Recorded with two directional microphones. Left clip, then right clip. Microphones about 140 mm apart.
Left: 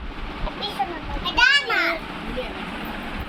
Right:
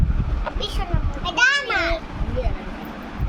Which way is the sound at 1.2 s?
90° right.